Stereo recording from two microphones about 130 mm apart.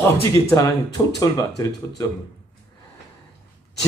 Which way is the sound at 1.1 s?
30° left (ahead or behind).